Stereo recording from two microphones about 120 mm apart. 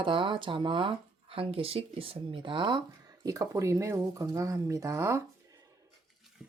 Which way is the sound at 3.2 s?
30° right (ahead or behind).